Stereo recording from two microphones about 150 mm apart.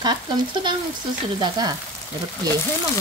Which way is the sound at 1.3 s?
30° right (ahead or behind).